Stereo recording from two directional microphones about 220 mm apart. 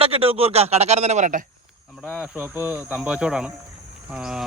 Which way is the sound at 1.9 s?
5° right (ahead or behind).